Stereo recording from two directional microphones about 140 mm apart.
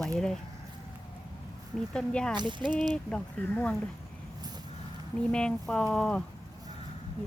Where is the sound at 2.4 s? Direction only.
35° right (ahead or behind).